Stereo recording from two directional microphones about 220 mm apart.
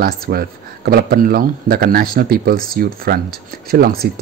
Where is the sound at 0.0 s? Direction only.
45° right (ahead or behind).